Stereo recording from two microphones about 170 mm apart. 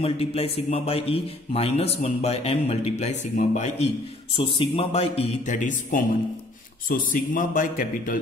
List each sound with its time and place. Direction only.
0.0 s a man's voice: 35° left (ahead or behind); by 8.2 s 50° left (ahead or behind)